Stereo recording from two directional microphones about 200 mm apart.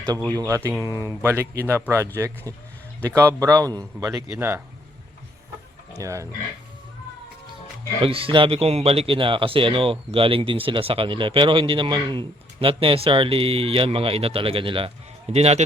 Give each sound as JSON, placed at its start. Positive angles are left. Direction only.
{"t": 0.3, "sound": "a man's voice", "side_deg": -15}
{"t": 6.0, "sound": "a man's voice", "side_deg": -15}
{"t": 8.0, "sound": "speech", "side_deg": -25}